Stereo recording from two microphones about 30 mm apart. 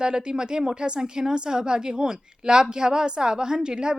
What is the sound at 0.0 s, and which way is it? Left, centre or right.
Speech, right.